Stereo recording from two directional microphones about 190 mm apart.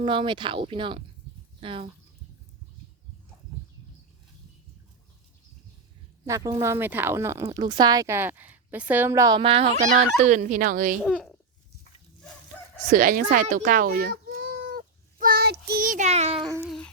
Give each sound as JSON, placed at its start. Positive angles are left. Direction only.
{"t": 0.0, "sound": "speech", "side_deg": -25}
{"t": 6.2, "sound": "a woman's voice", "side_deg": -15}
{"t": 11.0, "sound": "a child's voice", "side_deg": 0}
{"t": 12.9, "sound": "speech", "side_deg": -45}
{"t": 14.4, "sound": "a sound", "side_deg": -50}
{"t": 16.6, "sound": "music", "side_deg": 5}